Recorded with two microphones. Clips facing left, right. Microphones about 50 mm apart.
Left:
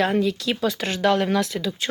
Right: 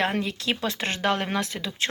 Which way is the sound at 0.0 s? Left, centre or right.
Right.